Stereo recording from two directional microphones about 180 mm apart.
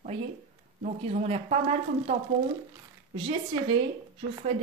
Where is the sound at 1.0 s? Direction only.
35° right (ahead or behind).